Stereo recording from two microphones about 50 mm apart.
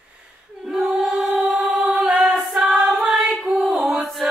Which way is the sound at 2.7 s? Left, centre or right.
Centre.